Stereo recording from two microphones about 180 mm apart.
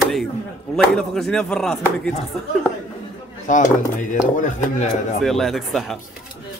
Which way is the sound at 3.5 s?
45° left (ahead or behind).